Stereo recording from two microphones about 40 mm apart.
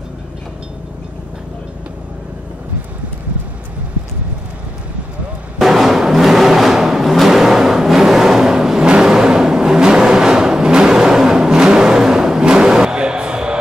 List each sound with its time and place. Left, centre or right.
5.6 s music: centre
9.0 s vehicle: centre